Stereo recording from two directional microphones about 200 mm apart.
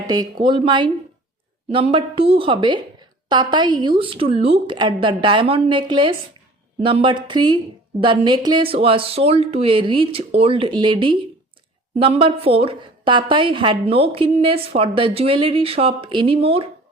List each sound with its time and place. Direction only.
0.1 s a woman's voice: 20° right (ahead or behind)